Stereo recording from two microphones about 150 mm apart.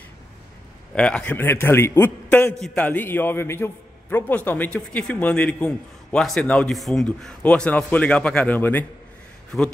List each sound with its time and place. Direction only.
0.9 s a man's voice: 5° left (ahead or behind)
9.5 s a man's voice: centre (ahead or behind)